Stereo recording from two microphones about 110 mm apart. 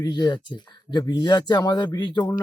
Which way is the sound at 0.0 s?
40° left (ahead or behind).